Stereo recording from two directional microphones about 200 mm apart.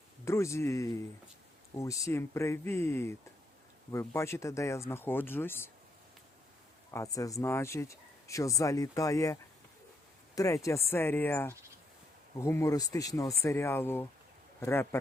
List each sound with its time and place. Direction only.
0.3 s speech: 15° left (ahead or behind)
6.9 s a man's voice: 15° left (ahead or behind)